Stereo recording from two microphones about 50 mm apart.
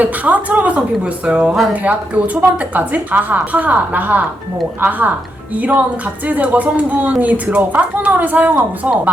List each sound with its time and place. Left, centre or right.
0.0 s a woman's voice: right
6.2 s a woman's voice: right